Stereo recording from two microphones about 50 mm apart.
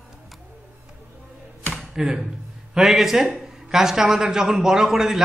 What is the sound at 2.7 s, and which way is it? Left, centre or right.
A woman's voice, centre.